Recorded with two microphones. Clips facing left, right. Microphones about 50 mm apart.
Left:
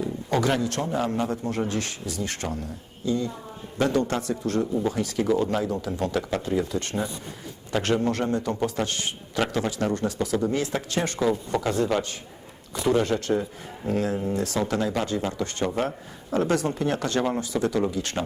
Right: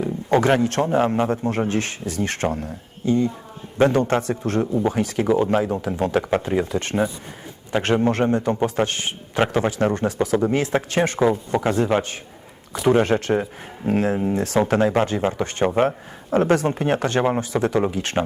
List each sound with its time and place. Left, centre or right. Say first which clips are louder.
0.0 s a man's voice: right 6 dB; right